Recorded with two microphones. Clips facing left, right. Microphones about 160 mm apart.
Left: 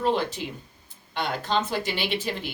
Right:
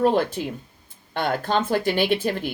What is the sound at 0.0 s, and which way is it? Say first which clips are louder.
Speech: right 5 dB; 50° right (ahead or behind).